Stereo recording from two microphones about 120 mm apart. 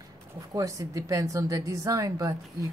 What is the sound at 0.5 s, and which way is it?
A woman's voice, 30° right (ahead or behind).